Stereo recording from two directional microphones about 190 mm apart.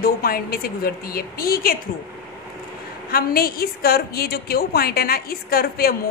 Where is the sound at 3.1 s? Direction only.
50° left (ahead or behind).